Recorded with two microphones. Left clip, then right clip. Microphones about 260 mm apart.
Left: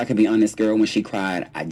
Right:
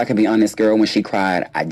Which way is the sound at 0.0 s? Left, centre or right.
Right.